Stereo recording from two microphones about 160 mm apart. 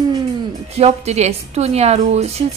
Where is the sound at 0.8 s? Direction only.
40° right (ahead or behind).